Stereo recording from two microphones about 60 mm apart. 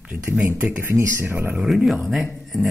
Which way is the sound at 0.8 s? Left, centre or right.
Right.